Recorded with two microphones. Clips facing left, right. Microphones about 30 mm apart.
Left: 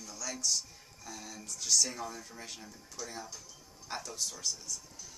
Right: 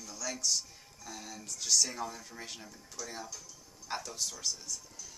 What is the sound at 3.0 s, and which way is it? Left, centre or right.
Speech, left.